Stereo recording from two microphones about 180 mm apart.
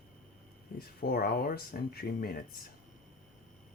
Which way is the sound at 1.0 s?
60° left (ahead or behind).